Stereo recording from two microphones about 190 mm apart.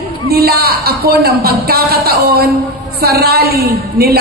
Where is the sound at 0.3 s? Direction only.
55° right (ahead or behind).